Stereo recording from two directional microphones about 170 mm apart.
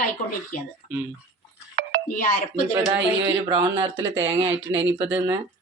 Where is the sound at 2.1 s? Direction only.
40° left (ahead or behind).